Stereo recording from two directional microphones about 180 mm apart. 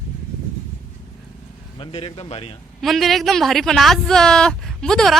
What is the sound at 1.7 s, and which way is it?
Speech, 30° left (ahead or behind).